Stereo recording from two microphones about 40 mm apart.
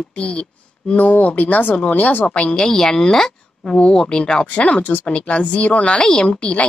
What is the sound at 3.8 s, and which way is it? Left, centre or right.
Speech, left.